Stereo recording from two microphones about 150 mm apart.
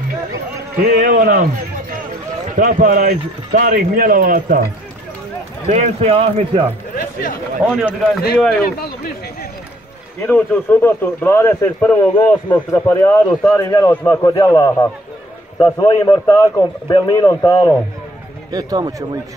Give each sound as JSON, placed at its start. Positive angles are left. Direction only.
{"t": 0.7, "sound": "a man's voice", "side_deg": -65}
{"t": 2.5, "sound": "speech", "side_deg": -60}
{"t": 5.7, "sound": "a man's voice", "side_deg": -50}
{"t": 7.6, "sound": "a man's voice", "side_deg": -5}
{"t": 8.6, "sound": "speech", "side_deg": 90}
{"t": 10.2, "sound": "a man's voice", "side_deg": 10}
{"t": 18.5, "sound": "speech", "side_deg": -25}